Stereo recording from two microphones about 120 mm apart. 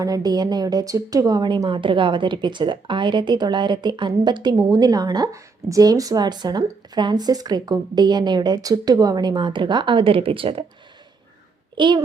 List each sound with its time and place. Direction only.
0.0 s a woman's voice: 30° right (ahead or behind); by 10.6 s 50° right (ahead or behind)
11.8 s a woman's voice: 40° right (ahead or behind)